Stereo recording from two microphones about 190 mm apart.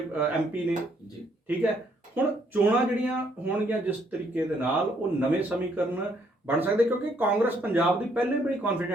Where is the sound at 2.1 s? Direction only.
10° right (ahead or behind).